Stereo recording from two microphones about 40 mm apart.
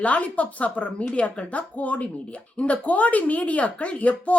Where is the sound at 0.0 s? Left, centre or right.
Left.